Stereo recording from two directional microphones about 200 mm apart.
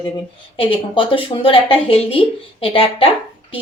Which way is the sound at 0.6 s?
25° left (ahead or behind).